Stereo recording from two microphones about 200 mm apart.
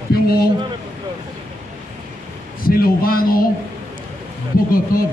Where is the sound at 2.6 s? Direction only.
45° left (ahead or behind).